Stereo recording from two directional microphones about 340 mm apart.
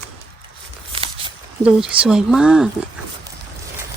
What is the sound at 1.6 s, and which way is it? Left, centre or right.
Speech, centre.